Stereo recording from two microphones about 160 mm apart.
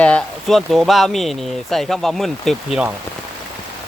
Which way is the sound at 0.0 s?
5° left (ahead or behind).